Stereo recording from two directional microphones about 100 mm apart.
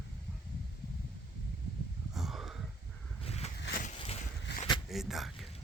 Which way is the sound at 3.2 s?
90° left.